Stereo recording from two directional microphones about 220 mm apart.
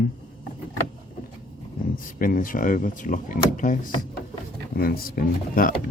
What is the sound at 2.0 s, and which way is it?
Speech, 40° left (ahead or behind).